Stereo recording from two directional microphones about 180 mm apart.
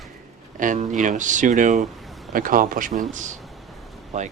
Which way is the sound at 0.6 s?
45° right (ahead or behind).